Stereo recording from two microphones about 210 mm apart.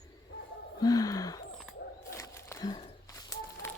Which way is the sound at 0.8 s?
15° left (ahead or behind).